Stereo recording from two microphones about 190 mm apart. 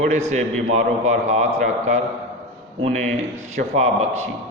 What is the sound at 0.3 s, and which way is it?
A man's voice, 40° right (ahead or behind).